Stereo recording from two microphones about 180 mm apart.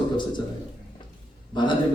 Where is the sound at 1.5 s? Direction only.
25° left (ahead or behind).